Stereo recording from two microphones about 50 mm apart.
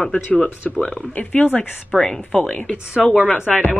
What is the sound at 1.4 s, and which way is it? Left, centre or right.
Speech, left.